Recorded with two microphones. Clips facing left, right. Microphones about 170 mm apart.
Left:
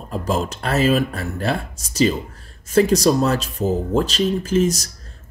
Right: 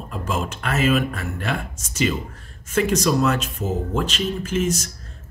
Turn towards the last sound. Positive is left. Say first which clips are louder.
# left 4 dB
turn(degrees=35)  # may be behind; listen again after turning